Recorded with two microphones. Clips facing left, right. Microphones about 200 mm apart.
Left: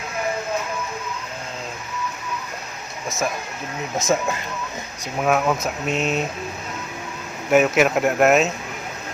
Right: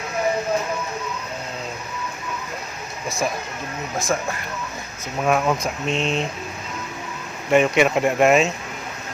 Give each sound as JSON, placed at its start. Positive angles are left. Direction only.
{"t": 3.9, "sound": "speech", "side_deg": 20}
{"t": 5.2, "sound": "speech", "side_deg": 0}
{"t": 7.5, "sound": "speech", "side_deg": 5}